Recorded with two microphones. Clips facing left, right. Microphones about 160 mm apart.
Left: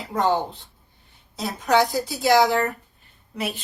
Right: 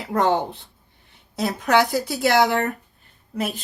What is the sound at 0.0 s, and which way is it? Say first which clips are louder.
A woman's voice: right 2 dB; 70° right (ahead or behind).